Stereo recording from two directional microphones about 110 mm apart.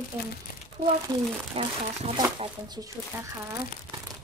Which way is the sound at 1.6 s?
60° right (ahead or behind).